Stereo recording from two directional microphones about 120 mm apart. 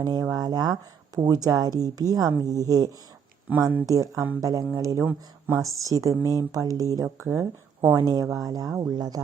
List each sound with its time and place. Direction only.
0.0 s a woman's voice: 30° right (ahead or behind)